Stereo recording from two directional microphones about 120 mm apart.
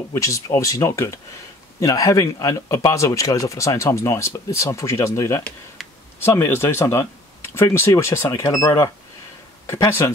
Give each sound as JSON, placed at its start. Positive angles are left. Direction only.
{"t": 0.1, "sound": "speech", "side_deg": 25}
{"t": 5.8, "sound": "a sound", "side_deg": 0}
{"t": 6.2, "sound": "speech", "side_deg": 20}